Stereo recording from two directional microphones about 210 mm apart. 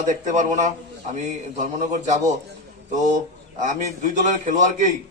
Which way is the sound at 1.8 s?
35° right (ahead or behind).